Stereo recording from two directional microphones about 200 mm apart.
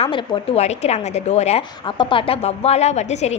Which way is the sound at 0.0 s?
25° left (ahead or behind).